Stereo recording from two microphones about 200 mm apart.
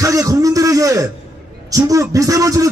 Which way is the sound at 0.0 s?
15° right (ahead or behind).